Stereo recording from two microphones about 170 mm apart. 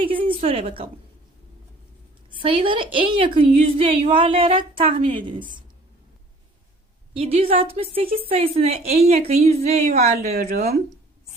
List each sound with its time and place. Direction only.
0.0 s a sound: 30° right (ahead or behind)
0.4 s a woman's voice: 35° right (ahead or behind)
2.3 s a woman's voice: 30° right (ahead or behind)
7.1 s a woman's voice: 35° right (ahead or behind)